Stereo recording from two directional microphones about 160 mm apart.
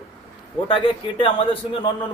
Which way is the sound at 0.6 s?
30° left (ahead or behind).